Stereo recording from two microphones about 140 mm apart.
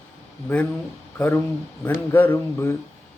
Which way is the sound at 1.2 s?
15° left (ahead or behind).